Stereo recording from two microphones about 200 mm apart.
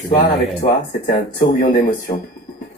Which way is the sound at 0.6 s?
45° left (ahead or behind).